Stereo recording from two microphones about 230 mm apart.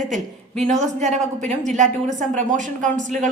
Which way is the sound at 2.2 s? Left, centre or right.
Right.